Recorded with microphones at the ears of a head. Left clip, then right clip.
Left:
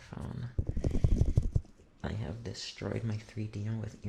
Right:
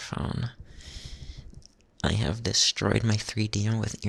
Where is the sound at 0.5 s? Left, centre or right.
Left.